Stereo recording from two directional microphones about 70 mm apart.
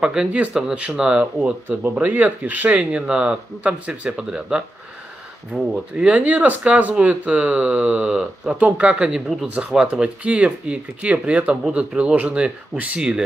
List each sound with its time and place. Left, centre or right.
0.0 s speech: centre